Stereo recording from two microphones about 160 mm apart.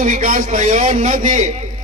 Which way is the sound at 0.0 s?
55° right (ahead or behind).